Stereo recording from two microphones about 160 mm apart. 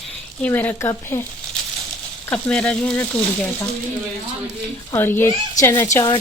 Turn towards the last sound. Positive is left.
turn(degrees=25)  # may be behind; listen again after turning